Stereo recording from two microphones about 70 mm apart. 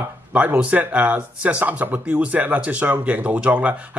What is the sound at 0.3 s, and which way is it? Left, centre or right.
Speech, centre.